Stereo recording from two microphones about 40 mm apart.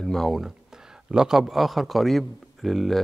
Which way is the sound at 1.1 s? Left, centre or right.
Centre.